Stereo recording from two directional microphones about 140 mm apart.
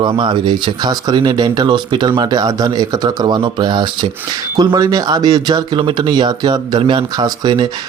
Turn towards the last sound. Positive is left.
turn(degrees=-30)  # may be behind; listen again after turning